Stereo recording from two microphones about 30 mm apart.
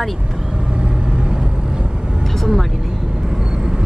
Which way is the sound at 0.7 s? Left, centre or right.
Right.